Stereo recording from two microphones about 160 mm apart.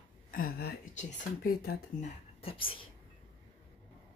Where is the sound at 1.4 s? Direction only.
70° left (ahead or behind).